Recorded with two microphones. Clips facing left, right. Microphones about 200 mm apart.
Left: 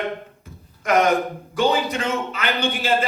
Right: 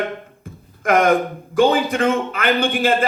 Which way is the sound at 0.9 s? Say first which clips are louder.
Right 3 dB; 50° right (ahead or behind).